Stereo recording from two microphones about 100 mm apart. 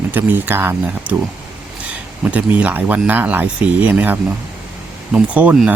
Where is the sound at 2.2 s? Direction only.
15° right (ahead or behind).